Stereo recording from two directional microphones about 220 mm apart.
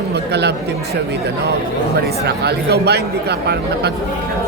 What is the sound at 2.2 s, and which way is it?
A man's voice, 50° right (ahead or behind).